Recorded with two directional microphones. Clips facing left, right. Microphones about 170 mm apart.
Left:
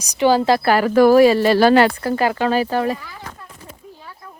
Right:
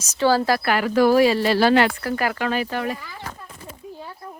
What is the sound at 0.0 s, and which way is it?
A woman's voice, 15° left (ahead or behind).